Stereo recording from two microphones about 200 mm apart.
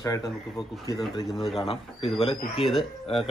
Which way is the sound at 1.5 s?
25° left (ahead or behind).